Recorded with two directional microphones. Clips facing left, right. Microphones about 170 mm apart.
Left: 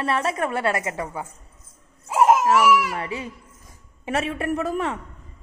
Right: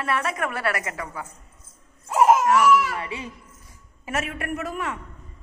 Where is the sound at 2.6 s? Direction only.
10° left (ahead or behind).